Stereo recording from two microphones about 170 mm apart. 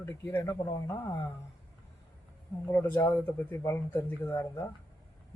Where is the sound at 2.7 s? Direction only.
15° left (ahead or behind).